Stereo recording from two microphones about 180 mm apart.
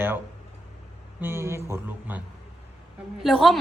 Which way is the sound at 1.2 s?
15° right (ahead or behind).